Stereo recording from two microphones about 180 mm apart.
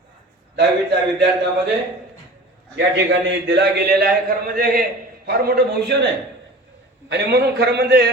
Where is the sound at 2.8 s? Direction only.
75° right (ahead or behind).